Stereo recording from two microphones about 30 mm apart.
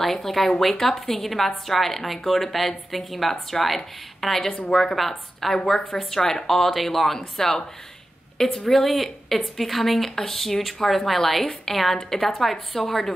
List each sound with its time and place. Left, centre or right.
0.0 s a woman's voice: centre
5.6 s speech: centre
7.2 s speech: centre
8.8 s a woman's voice: centre
12.0 s speech: centre